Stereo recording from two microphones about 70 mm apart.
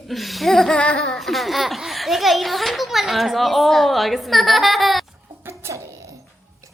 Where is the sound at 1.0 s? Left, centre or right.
Centre.